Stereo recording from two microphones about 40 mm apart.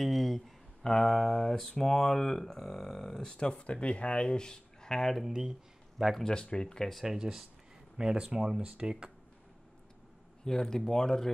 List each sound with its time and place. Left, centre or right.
0.0 s a sound: centre
0.8 s speech: centre
5.3 s speech: centre
6.2 s speech: left
7.1 s speech: centre
10.4 s speech: centre